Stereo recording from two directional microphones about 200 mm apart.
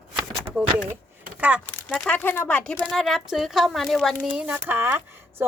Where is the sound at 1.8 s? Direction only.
5° left (ahead or behind).